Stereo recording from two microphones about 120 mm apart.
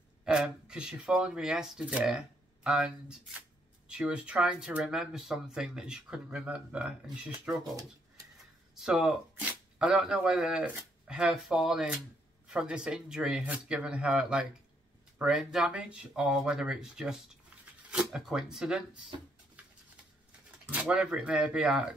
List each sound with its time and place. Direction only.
0.2 s speech: 5° right (ahead or behind)
8.7 s speech: 5° right (ahead or behind)
19.1 s speech: 45° right (ahead or behind)
20.6 s speech: 10° right (ahead or behind)